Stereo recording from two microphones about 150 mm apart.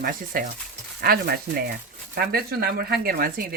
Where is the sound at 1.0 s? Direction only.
90° right.